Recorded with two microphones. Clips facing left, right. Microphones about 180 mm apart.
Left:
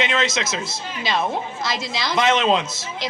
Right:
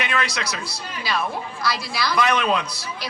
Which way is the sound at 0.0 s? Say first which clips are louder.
Left 3 dB; 20° left (ahead or behind).